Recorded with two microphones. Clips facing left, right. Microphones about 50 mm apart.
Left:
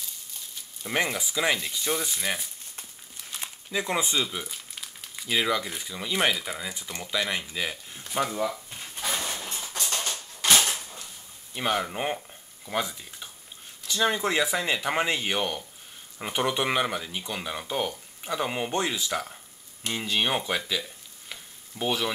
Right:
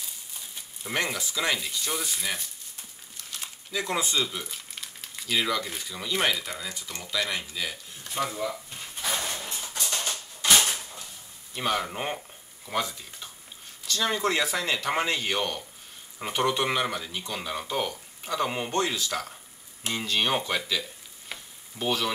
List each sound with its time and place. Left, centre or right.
0.9 s speech: centre
3.3 s crumpling: centre
5.3 s speech: centre
8.5 s a sound: centre
9.1 s dog: centre
9.8 s a sound: centre
11.5 s speech: centre
16.4 s speech: centre
21.3 s frying: centre
21.7 s speech: centre